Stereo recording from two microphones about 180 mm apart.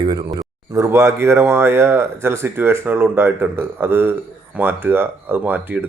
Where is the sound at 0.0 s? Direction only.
20° right (ahead or behind).